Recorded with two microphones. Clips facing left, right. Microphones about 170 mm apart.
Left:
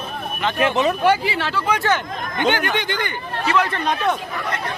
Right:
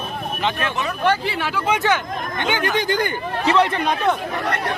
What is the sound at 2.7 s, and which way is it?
Speech, 40° right (ahead or behind).